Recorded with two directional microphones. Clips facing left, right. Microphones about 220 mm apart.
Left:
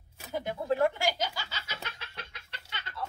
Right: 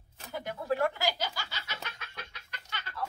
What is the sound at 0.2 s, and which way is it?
Speech, 20° left (ahead or behind).